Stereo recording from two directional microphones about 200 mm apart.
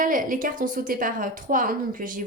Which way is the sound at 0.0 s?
40° right (ahead or behind).